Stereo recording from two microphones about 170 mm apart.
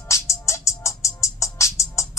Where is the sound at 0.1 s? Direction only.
15° left (ahead or behind).